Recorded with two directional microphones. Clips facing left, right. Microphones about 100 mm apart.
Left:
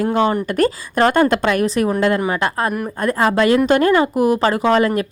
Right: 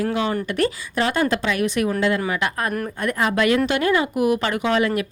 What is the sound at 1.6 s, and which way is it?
A woman's voice, 40° left (ahead or behind).